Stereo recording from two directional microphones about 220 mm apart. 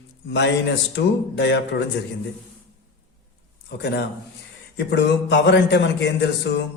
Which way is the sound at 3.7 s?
50° left (ahead or behind).